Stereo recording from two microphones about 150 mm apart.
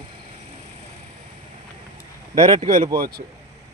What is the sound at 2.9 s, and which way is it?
Speech, 80° right.